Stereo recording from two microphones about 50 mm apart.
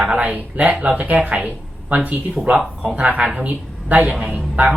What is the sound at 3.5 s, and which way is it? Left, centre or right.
A woman's voice, right.